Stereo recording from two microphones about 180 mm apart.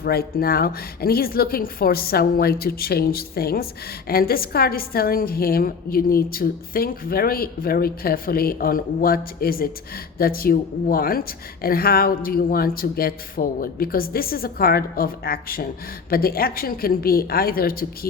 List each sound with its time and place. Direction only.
0.0 s a woman's voice: 60° left (ahead or behind)